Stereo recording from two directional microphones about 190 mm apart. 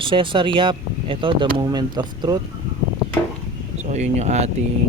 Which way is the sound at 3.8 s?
35° right (ahead or behind).